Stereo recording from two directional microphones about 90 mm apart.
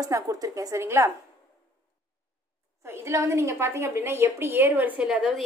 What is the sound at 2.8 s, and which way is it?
A woman's voice, 30° right (ahead or behind).